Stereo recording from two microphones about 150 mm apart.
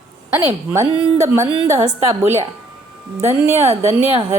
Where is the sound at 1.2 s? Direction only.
20° right (ahead or behind).